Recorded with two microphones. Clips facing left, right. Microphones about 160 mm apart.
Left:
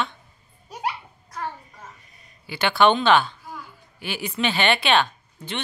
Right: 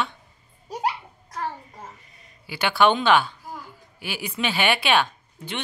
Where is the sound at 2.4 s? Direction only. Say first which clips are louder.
Left 1 dB; 10° right (ahead or behind).